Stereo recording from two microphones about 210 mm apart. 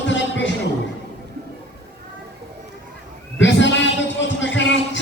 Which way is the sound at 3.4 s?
60° left (ahead or behind).